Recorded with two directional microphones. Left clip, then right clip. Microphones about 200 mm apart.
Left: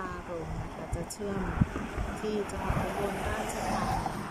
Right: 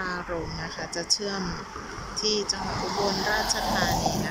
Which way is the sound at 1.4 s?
55° left (ahead or behind).